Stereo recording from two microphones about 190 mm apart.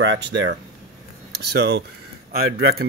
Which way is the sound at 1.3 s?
60° right (ahead or behind).